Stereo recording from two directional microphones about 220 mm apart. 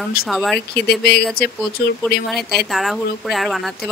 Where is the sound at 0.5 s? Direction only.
45° left (ahead or behind).